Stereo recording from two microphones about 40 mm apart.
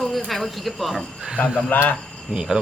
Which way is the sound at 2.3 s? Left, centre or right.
Centre.